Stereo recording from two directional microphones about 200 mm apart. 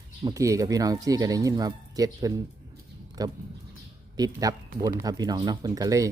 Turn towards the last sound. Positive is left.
turn(degrees=-15)  # may be behind; listen again after turning